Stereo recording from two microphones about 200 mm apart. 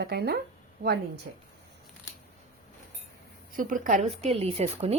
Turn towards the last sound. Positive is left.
turn(degrees=-30)  # may be behind; listen again after turning